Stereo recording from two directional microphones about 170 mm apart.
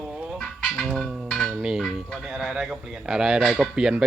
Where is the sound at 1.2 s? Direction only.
10° left (ahead or behind).